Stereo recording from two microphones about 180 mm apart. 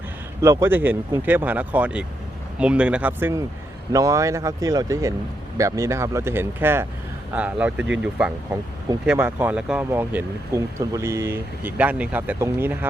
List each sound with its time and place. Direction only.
0.4 s speech: 15° right (ahead or behind)